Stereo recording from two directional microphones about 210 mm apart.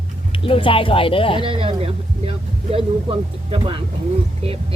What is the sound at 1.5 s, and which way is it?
Speech, 25° right (ahead or behind).